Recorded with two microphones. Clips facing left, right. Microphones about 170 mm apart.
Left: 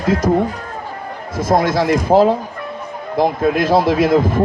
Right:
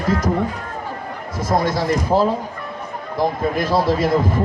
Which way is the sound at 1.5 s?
90° left.